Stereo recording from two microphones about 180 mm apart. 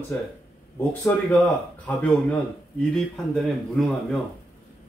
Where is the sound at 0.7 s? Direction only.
10° left (ahead or behind).